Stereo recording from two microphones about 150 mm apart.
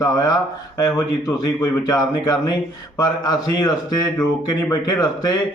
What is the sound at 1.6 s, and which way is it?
A man's voice, 25° left (ahead or behind).